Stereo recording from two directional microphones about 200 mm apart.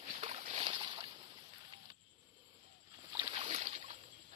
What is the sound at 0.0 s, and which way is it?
Boat, 30° right (ahead or behind).